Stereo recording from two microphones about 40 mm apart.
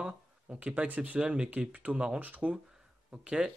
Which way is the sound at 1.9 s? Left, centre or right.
Right.